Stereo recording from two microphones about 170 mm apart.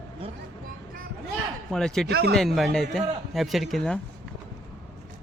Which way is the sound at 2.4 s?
Centre (ahead or behind).